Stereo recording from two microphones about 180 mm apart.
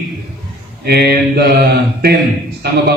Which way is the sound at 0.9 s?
60° right (ahead or behind).